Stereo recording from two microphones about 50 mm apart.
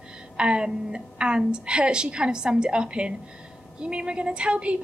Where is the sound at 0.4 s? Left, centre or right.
Centre.